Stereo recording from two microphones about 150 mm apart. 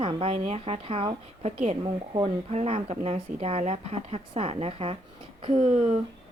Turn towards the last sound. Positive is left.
turn(degrees=-45)  # may be behind; listen again after turning